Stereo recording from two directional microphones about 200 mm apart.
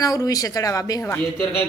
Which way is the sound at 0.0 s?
15° left (ahead or behind).